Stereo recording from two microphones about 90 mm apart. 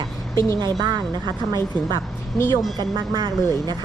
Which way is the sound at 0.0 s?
50° right (ahead or behind).